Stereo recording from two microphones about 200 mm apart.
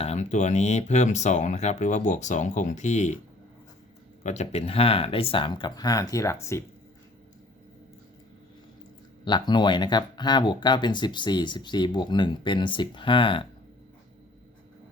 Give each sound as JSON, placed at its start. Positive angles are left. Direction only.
{"t": 0.0, "sound": "speech", "side_deg": 35}
{"t": 4.2, "sound": "speech", "side_deg": 35}
{"t": 9.2, "sound": "speech", "side_deg": 20}